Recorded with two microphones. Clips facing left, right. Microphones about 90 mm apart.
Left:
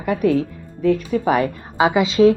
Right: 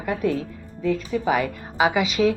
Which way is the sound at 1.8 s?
30° left (ahead or behind).